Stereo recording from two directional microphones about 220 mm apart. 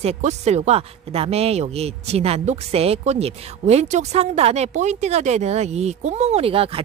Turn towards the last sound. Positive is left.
turn(degrees=-25)  # may be behind; listen again after turning